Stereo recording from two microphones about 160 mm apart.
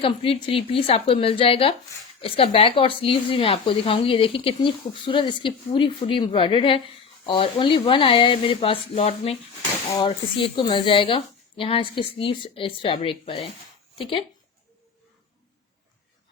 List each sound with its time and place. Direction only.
0.0 s speech: 35° left (ahead or behind)